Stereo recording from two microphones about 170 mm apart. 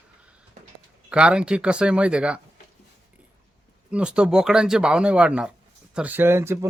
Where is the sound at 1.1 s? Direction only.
5° right (ahead or behind).